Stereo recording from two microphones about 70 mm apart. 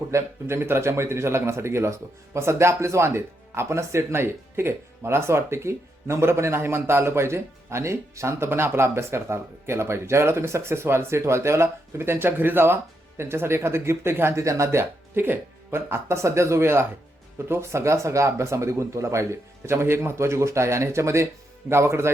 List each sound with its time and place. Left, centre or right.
0.1 s speech: right